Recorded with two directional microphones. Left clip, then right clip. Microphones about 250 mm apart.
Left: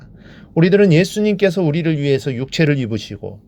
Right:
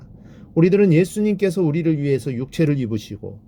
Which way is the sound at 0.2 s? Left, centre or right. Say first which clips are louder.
Left 1 dB; centre.